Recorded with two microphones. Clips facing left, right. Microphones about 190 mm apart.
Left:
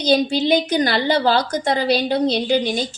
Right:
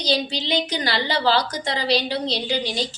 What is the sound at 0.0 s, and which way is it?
A woman's voice, 50° left (ahead or behind).